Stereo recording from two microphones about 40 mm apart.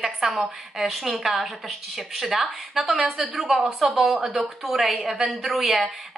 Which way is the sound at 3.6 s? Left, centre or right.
Centre.